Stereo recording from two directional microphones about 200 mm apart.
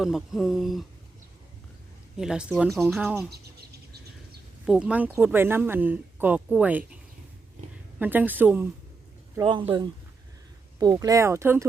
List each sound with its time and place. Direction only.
0.0 s speech: centre (ahead or behind)
2.1 s speech: 5° right (ahead or behind)
4.6 s speech: 5° right (ahead or behind)
7.9 s speech: 10° right (ahead or behind)
9.4 s speech: 25° right (ahead or behind)